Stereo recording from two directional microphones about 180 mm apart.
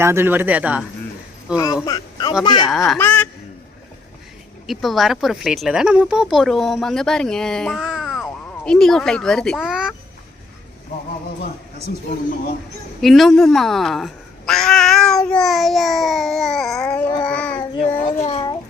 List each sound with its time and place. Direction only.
0.0 s speech: 15° right (ahead or behind)
1.5 s a man's voice: 20° left (ahead or behind)
2.6 s speech: centre (ahead or behind)
3.0 s honk: 10° left (ahead or behind)
4.6 s speech: centre (ahead or behind)
11.9 s speech: 60° left (ahead or behind)
13.0 s speech: centre (ahead or behind)
17.2 s child singing: 5° left (ahead or behind)
17.6 s child singing: 30° left (ahead or behind)
18.0 s a child's voice: 35° left (ahead or behind)